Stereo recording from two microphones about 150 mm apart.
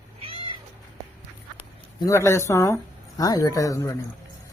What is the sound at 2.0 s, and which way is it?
Speech, 20° left (ahead or behind).